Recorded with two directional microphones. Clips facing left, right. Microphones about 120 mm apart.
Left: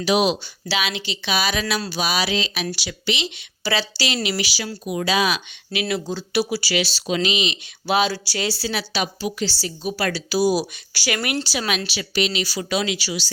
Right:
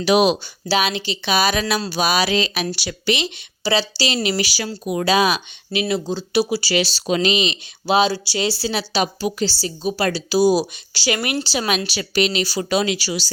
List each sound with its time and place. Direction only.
0.0 s speech: 55° right (ahead or behind)
0.7 s speech: 40° right (ahead or behind)
3.6 s speech: 25° right (ahead or behind); by 5.4 s 40° right (ahead or behind)
5.9 s speech: 25° right (ahead or behind)
11.9 s speech: 45° right (ahead or behind)